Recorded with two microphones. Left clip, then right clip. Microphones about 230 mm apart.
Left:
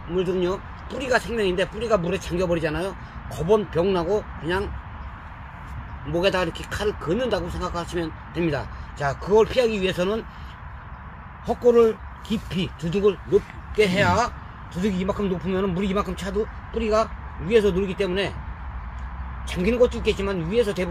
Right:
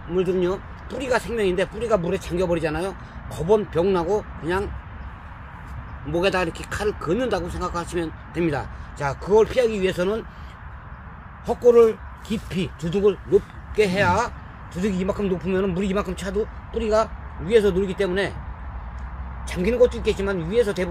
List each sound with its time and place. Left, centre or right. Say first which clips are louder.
0.1 s speech: right 2 dB; centre
6.1 s speech: even; centre
11.4 s speech: right 2 dB; centre
19.5 s speech: right 1 dB; centre